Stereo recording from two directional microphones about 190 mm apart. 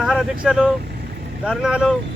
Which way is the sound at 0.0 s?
Centre (ahead or behind).